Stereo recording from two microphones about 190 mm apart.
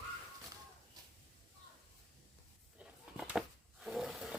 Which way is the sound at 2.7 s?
5° right (ahead or behind).